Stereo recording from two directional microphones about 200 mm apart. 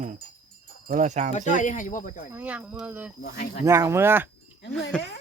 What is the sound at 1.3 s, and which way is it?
Speech, 35° left (ahead or behind).